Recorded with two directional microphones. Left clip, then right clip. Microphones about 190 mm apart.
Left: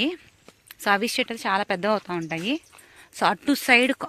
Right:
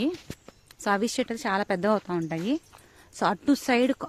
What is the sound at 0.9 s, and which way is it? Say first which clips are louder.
Speech: left 4 dB; 10° right (ahead or behind).